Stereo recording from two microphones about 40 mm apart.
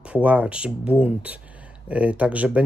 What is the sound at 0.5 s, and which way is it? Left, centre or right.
Speech, right.